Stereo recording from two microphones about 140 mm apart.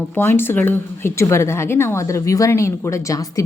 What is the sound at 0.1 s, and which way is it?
A woman's voice, 15° left (ahead or behind).